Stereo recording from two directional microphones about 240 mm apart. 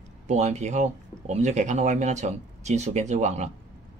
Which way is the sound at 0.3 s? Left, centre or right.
Right.